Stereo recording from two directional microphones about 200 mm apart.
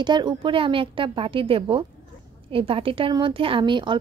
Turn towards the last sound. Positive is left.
turn(degrees=-25)  # may be behind; listen again after turning